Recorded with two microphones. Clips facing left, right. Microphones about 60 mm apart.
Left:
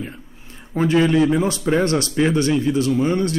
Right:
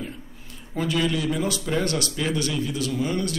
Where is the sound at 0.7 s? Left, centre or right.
Left.